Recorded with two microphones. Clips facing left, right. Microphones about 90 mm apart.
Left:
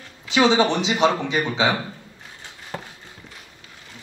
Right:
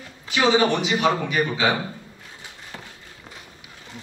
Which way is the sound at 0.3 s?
25° left (ahead or behind).